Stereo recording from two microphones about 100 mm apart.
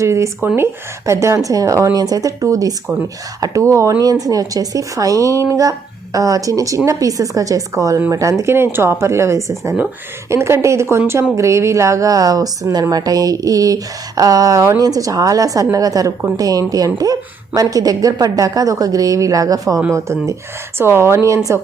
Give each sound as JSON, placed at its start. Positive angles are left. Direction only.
{"t": 0.0, "sound": "a woman's voice", "side_deg": -30}